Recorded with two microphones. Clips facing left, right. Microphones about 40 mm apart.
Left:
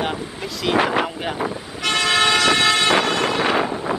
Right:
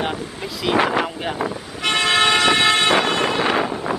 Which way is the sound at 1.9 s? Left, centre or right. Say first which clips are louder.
Right 1 dB; right.